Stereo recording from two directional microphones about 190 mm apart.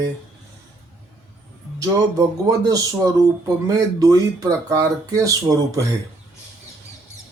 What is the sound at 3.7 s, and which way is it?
Speech, 20° right (ahead or behind).